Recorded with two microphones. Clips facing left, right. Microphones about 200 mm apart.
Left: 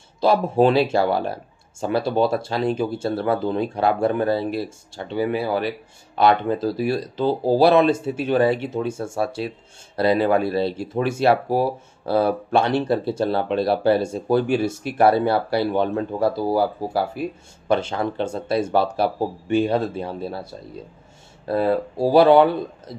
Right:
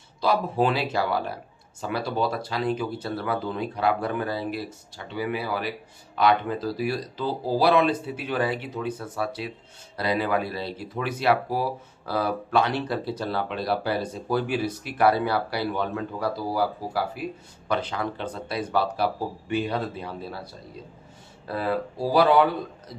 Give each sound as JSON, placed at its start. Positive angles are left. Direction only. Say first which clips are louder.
{"t": 0.2, "sound": "speech", "louder": "left 6 dB", "side_deg": 25}
{"t": 21.5, "sound": "speech", "louder": "left 7 dB", "side_deg": 25}